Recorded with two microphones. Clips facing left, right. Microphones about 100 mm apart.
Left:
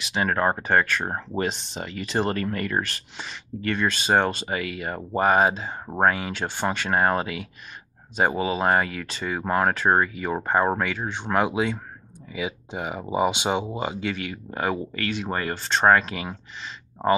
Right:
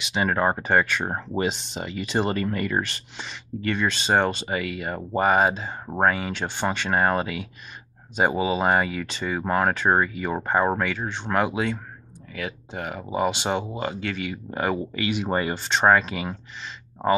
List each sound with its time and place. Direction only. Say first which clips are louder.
0.0 s speech: even; centre (ahead or behind)
15.0 s speech: right 3 dB; 15° right (ahead or behind)